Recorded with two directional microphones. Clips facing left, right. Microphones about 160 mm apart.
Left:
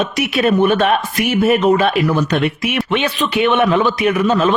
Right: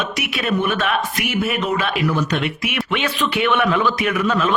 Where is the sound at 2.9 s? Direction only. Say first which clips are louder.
Left 4 dB; 20° left (ahead or behind).